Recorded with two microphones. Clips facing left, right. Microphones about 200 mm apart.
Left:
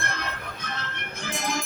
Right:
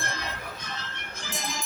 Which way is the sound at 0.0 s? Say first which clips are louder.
Left 2 dB; 60° left (ahead or behind).